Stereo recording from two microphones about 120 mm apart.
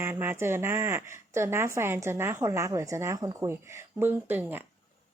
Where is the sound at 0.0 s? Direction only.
20° right (ahead or behind).